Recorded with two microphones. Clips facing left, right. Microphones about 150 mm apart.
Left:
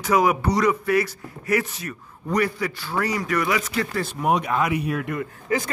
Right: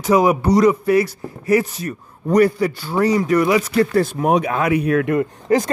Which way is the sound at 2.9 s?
25° right (ahead or behind).